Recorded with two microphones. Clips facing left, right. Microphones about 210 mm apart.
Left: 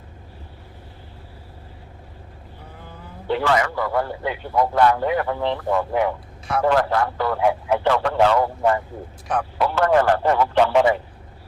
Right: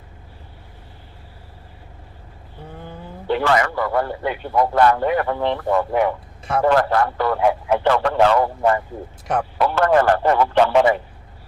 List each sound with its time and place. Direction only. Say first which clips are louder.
3.2 s a man's voice: right 2 dB; 60° right (ahead or behind)